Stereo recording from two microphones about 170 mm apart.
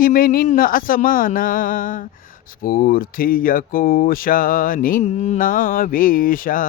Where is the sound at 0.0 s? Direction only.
60° left (ahead or behind).